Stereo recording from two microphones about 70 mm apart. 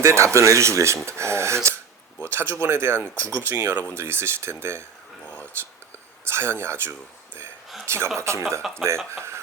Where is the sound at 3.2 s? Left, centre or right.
Left.